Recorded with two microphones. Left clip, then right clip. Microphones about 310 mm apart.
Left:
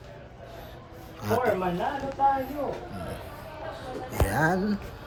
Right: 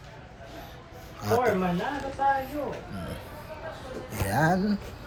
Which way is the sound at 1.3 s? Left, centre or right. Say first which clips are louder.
Right 1 dB; centre.